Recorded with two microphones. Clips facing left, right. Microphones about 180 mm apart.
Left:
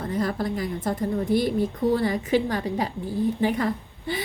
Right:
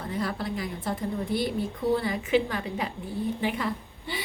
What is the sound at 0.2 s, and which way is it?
A woman's voice, 45° left (ahead or behind).